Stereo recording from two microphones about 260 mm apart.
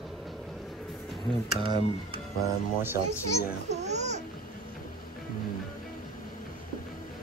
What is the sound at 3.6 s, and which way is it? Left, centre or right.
Babbling, right.